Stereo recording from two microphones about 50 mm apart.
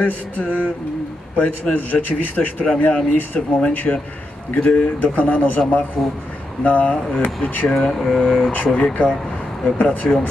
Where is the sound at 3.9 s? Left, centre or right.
Left.